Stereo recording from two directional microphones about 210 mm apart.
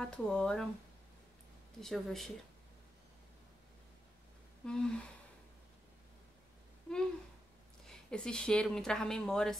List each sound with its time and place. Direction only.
0.0 s speech: 5° left (ahead or behind)
1.8 s speech: centre (ahead or behind)
4.6 s speech: 5° left (ahead or behind)
7.8 s speech: 5° left (ahead or behind)